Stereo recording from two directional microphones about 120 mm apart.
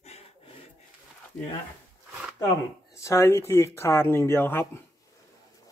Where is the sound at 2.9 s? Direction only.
25° left (ahead or behind).